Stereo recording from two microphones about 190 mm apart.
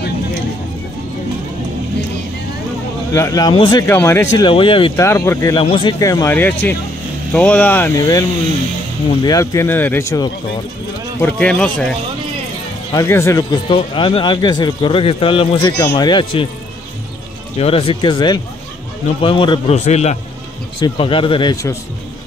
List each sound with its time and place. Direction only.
3.1 s speech: 15° left (ahead or behind)
4.5 s speech: 25° left (ahead or behind)
4.9 s speech: 15° left (ahead or behind)
12.9 s speech: 15° left (ahead or behind)
17.6 s speech: 30° left (ahead or behind)
19.8 s a man's voice: 35° left (ahead or behind)